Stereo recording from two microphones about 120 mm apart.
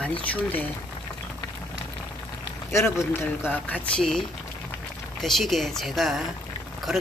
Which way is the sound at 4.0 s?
5° left (ahead or behind).